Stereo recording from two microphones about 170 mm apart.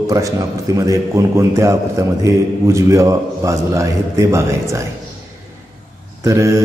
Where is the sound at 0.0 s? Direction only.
20° right (ahead or behind).